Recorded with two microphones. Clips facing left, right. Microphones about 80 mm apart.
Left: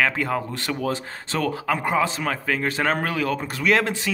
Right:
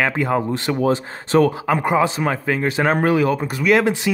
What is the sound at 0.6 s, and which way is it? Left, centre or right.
Speech, right.